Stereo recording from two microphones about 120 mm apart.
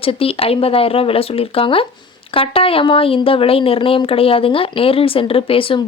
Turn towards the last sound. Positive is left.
turn(degrees=50)  # may be behind; listen again after turning